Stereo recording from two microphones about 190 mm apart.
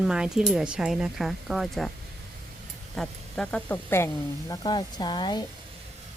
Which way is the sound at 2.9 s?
5° left (ahead or behind).